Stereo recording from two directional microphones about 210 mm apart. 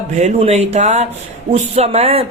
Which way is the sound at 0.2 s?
30° right (ahead or behind).